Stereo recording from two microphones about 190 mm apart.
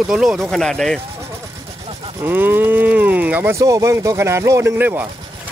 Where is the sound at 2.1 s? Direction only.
10° right (ahead or behind).